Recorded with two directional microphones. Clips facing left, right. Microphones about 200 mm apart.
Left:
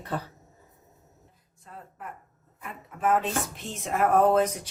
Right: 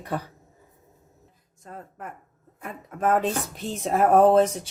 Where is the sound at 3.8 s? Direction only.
35° right (ahead or behind).